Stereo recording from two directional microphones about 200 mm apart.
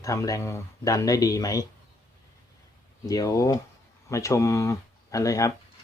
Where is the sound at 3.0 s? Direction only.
15° left (ahead or behind).